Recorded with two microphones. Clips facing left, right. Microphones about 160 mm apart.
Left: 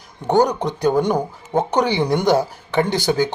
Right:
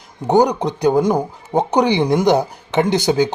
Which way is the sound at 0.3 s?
10° right (ahead or behind).